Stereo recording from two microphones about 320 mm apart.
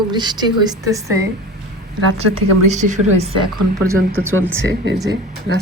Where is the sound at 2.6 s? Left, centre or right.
Right.